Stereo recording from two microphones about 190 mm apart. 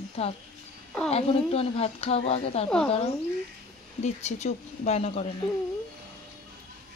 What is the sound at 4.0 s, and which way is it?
Speech, 35° left (ahead or behind).